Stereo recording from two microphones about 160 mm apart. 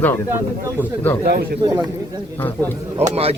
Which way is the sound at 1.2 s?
75° right (ahead or behind).